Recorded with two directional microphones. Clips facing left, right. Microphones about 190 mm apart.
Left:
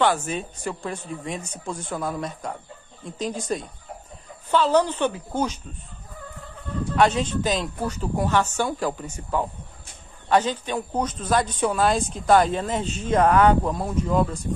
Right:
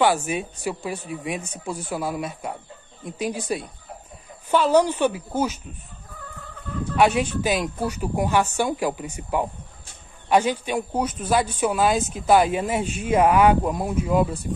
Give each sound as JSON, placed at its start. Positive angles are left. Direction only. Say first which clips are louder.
{"t": 0.0, "sound": "a man's voice", "louder": "right 2 dB", "side_deg": -10}
{"t": 7.0, "sound": "a man's voice", "louder": "right 1 dB", "side_deg": -10}